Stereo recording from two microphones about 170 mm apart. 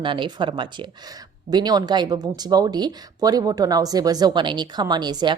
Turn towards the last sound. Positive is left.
turn(degrees=-25)  # may be behind; listen again after turning